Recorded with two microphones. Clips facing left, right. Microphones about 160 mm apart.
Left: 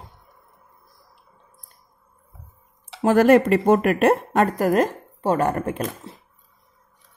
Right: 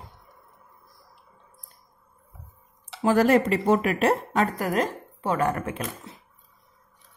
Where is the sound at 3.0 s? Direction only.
55° left (ahead or behind).